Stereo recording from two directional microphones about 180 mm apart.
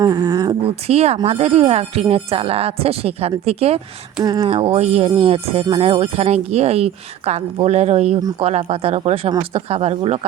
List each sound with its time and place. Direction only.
0.0 s speech: 20° right (ahead or behind)
0.9 s speech: 35° right (ahead or behind)
4.2 s speech: 20° right (ahead or behind)
4.4 s speech: 30° right (ahead or behind)